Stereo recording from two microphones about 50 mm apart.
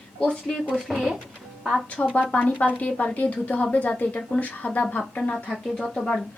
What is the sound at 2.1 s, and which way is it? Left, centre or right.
A woman's voice, left.